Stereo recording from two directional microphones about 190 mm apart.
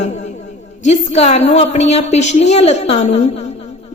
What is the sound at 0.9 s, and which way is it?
A woman's voice, 35° left (ahead or behind).